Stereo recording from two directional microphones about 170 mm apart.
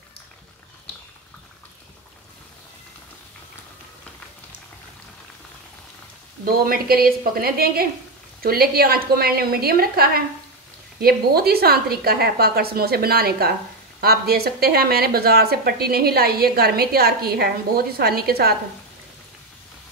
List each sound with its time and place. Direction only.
6.4 s a woman's voice: 60° right (ahead or behind)